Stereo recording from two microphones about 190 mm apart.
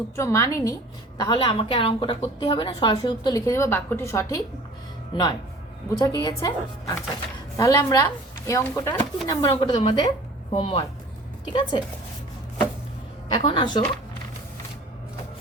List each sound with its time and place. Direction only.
0.2 s a woman's voice: 15° left (ahead or behind)
13.4 s a woman's voice: 25° left (ahead or behind)